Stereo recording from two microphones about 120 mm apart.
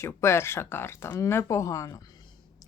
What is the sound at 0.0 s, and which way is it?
A woman's voice, 20° left (ahead or behind).